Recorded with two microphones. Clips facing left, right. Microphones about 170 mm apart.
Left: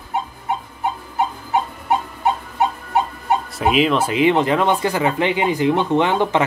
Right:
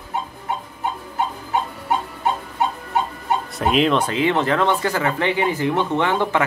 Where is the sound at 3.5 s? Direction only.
5° left (ahead or behind).